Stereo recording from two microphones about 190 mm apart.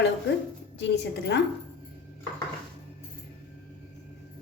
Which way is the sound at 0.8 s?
65° left (ahead or behind).